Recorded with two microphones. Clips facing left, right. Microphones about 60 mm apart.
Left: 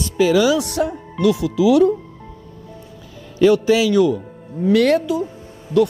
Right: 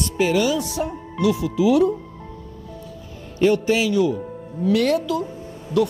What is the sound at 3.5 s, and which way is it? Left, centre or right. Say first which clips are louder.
Speech: left 4 dB; left.